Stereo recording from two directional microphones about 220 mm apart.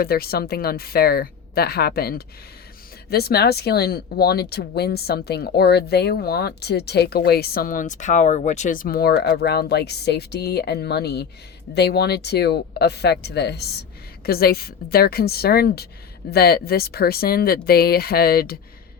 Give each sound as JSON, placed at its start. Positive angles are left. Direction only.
{"t": 0.0, "sound": "speech", "side_deg": 45}